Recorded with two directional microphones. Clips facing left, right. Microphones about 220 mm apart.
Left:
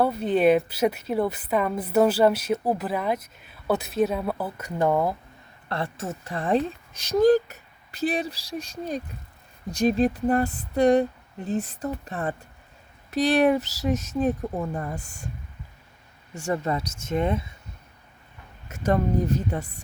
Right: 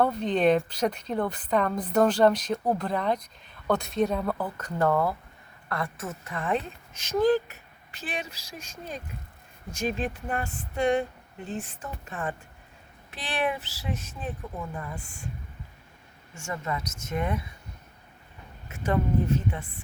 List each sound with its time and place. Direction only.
0.0 s a woman's voice: 5° left (ahead or behind)
5.6 s a woman's voice: 30° left (ahead or behind)
16.3 s speech: 35° left (ahead or behind)
18.7 s a woman's voice: 40° left (ahead or behind)